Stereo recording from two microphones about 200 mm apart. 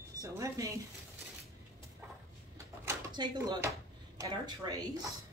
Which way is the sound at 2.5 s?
15° right (ahead or behind).